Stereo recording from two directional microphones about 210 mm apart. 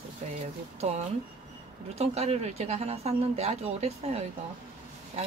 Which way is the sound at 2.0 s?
30° right (ahead or behind).